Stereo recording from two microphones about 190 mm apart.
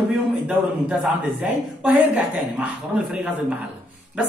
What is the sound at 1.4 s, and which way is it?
A man's voice, 5° right (ahead or behind).